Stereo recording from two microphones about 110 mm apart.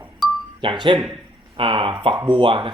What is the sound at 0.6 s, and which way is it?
Speech, 45° right (ahead or behind).